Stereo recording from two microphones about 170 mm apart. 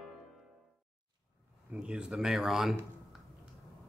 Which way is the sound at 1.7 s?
5° right (ahead or behind).